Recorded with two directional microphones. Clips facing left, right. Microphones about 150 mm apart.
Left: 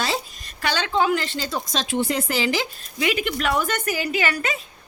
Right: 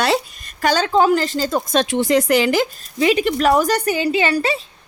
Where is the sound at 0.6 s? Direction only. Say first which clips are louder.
Right 6 dB; 40° right (ahead or behind); by 2.6 s 60° right (ahead or behind).